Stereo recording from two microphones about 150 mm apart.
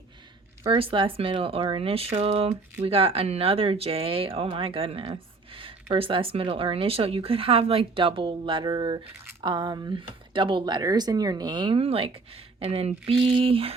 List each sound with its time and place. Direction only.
0.6 s speech: 35° right (ahead or behind)